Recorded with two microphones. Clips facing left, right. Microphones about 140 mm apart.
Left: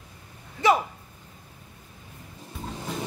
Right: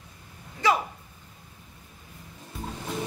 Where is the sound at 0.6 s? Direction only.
20° left (ahead or behind).